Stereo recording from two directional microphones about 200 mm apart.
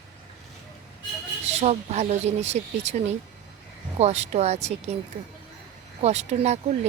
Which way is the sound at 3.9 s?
35° right (ahead or behind).